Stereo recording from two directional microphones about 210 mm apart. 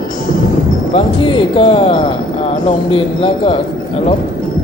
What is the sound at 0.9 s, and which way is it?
Speech, 25° left (ahead or behind).